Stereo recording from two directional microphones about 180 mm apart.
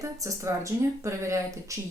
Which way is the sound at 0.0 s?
15° right (ahead or behind).